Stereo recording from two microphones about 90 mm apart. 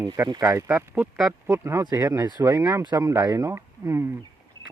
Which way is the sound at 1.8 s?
45° right (ahead or behind).